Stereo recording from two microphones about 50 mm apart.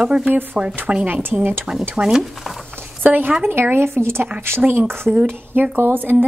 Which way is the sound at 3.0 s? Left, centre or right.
Right.